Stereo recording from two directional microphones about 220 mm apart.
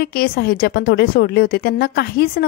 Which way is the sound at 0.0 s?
45° left (ahead or behind).